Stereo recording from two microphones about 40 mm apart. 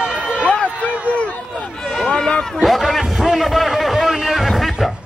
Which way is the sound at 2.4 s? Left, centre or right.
Centre.